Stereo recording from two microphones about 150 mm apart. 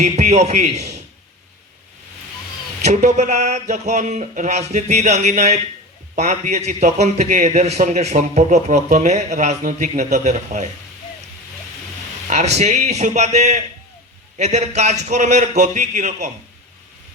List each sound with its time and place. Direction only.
0.0 s a man's voice: 50° right (ahead or behind)
2.8 s a man's voice: 50° right (ahead or behind)
12.3 s a man's voice: 50° right (ahead or behind)